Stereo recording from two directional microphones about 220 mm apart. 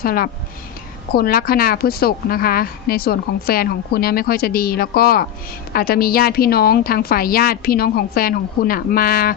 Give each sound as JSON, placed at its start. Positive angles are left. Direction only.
{"t": 0.0, "sound": "a woman's voice", "side_deg": 40}